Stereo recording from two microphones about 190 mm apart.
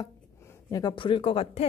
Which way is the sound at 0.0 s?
15° left (ahead or behind).